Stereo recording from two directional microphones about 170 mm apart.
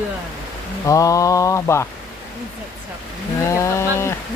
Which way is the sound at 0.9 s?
20° left (ahead or behind).